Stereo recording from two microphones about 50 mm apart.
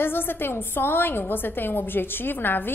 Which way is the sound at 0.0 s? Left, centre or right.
Left.